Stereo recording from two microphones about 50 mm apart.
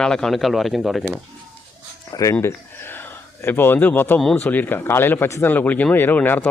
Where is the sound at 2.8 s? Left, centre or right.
Left.